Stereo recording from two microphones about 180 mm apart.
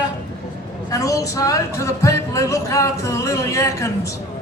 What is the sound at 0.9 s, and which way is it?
A woman's voice, 20° left (ahead or behind).